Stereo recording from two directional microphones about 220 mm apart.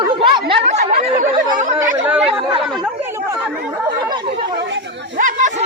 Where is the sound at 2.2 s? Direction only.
25° right (ahead or behind).